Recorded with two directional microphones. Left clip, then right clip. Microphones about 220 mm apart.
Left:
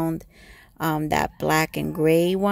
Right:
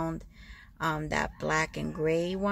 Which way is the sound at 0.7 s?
40° left (ahead or behind).